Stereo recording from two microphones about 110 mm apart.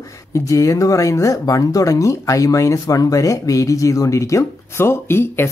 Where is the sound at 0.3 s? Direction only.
30° left (ahead or behind).